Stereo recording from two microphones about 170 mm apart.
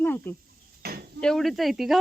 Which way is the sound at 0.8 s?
65° right (ahead or behind).